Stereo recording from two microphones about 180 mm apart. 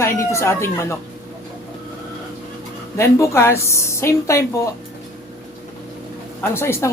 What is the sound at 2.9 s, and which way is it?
Speech, 15° left (ahead or behind).